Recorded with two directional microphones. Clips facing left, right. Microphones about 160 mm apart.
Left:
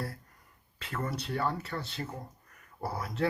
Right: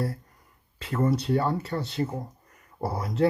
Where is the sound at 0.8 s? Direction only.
35° right (ahead or behind).